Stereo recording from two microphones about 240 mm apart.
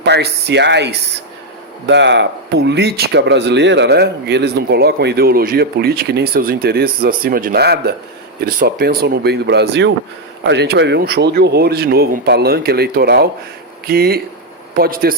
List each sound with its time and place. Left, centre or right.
0.0 s speech: right